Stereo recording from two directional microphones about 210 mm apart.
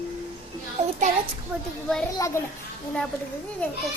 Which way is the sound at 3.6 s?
10° left (ahead or behind).